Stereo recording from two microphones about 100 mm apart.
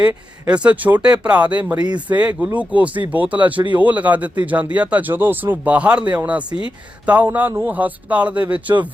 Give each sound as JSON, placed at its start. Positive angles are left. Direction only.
{"t": 0.4, "sound": "speech", "side_deg": -10}